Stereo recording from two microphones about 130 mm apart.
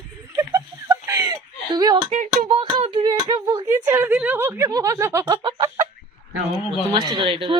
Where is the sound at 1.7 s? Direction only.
35° right (ahead or behind).